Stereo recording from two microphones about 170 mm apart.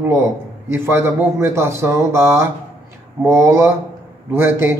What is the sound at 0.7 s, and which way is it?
A man's voice, 15° right (ahead or behind).